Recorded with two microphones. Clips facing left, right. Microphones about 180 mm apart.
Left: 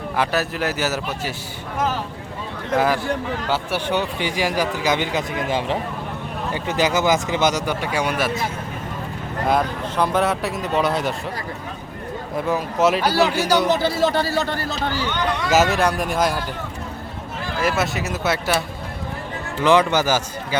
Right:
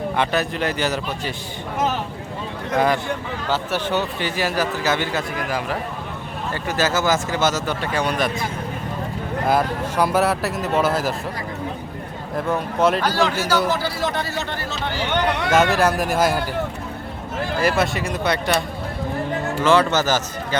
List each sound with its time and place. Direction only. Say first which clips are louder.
0.2 s speech: left 1 dB; 5° left (ahead or behind)
2.7 s speech: even; 5° left (ahead or behind); by 5.7 s 25° left (ahead or behind)
6.5 s speech: left 1 dB; 15° left (ahead or behind)
9.5 s speech: even; 5° right (ahead or behind)
12.5 s speech: even; centre (ahead or behind)
13.7 s a man's voice: left 4 dB; 25° left (ahead or behind); by 14.9 s 40° left (ahead or behind)
15.1 s speech: right 2 dB; 65° right (ahead or behind)
15.7 s speech: right 1 dB; 5° right (ahead or behind)
17.6 s speech: right 1 dB; centre (ahead or behind)
19.6 s speech: left 1 dB; 15° left (ahead or behind)